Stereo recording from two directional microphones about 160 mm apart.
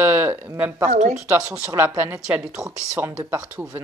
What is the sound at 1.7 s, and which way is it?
Speech, 15° right (ahead or behind).